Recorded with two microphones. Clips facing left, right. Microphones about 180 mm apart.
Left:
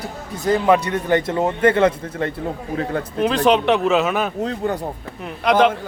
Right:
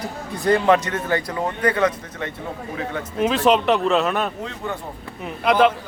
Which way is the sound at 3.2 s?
5° right (ahead or behind).